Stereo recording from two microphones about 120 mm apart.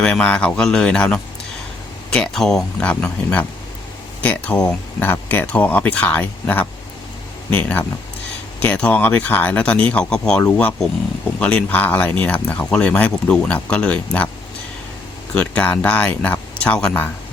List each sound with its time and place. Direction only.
0.0 s speech: 10° left (ahead or behind)
15.4 s speech: 10° left (ahead or behind)